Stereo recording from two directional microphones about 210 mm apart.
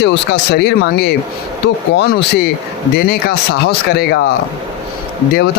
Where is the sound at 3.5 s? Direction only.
50° left (ahead or behind).